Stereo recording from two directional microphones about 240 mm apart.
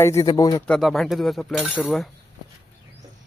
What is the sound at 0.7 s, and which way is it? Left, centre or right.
Speech, centre.